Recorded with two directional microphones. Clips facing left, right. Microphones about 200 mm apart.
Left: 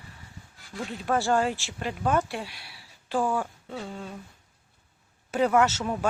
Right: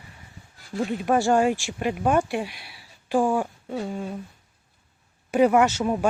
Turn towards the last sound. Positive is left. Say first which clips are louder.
# right 4 dB
turn(degrees=-15)  # may be behind; listen again after turning